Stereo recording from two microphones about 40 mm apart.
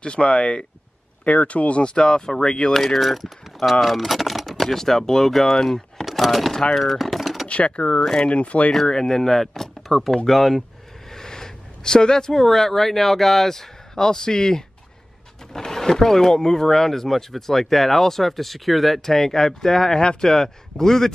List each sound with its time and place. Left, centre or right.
0.0 s speech: left
2.0 s speech: centre
2.7 s speech: centre
6.7 s typing: centre
7.4 s speech: left
8.0 s speech: centre
8.3 s speech: left
8.8 s speech: centre